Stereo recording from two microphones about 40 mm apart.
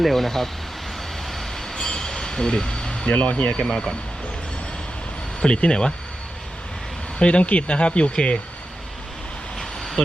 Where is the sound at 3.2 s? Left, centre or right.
Left.